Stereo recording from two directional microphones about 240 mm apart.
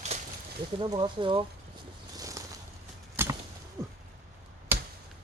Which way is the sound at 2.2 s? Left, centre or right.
Centre.